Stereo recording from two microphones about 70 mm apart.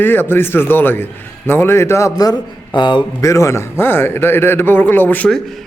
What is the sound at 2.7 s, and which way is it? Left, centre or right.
Speech, left.